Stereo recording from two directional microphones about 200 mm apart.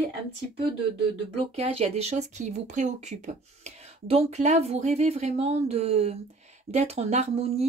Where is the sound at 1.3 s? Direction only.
30° right (ahead or behind).